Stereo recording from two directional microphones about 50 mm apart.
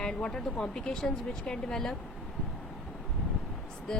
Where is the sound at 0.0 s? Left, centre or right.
Centre.